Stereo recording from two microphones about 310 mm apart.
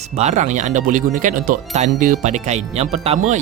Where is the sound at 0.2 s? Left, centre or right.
Right.